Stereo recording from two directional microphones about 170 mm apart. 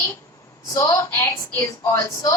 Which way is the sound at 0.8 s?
15° left (ahead or behind).